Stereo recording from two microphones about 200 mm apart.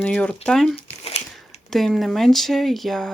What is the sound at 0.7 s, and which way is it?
Crumpling, 30° left (ahead or behind).